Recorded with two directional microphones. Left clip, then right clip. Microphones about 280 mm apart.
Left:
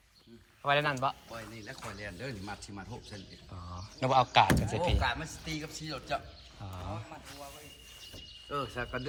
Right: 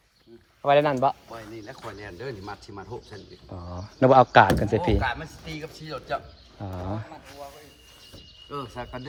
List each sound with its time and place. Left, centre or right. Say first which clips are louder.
0.6 s speech: right 9 dB; right